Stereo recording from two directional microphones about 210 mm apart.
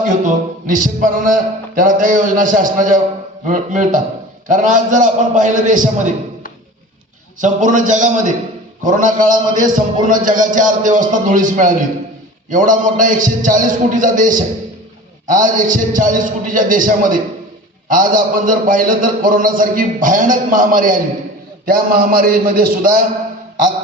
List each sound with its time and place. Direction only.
0.1 s a man's voice: 35° right (ahead or behind)
7.4 s a man's voice: 35° right (ahead or behind)